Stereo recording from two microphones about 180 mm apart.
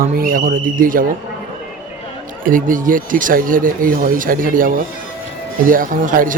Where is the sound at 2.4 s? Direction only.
50° right (ahead or behind).